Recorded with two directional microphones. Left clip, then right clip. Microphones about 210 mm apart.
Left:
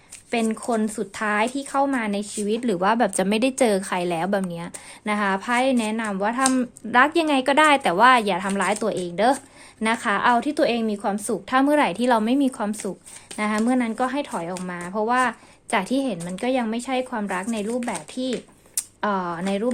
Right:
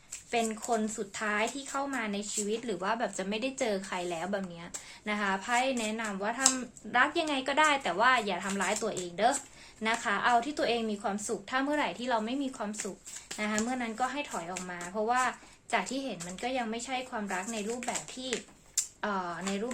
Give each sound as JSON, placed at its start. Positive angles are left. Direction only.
{"t": 0.3, "sound": "speech", "side_deg": 50}
{"t": 18.8, "sound": "speech", "side_deg": 50}